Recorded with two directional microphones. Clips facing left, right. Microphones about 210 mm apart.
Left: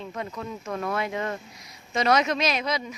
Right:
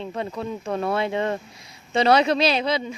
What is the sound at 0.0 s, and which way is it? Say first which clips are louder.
Speech: right 5 dB; 30° right (ahead or behind).